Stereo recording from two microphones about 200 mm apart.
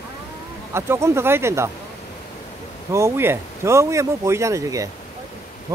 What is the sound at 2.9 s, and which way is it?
Speech, 10° right (ahead or behind).